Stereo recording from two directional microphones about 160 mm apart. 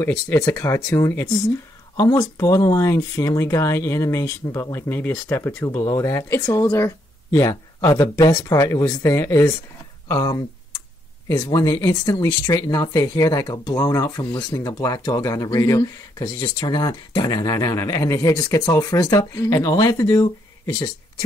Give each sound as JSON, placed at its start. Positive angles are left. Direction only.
{"t": 0.0, "sound": "speech", "side_deg": 20}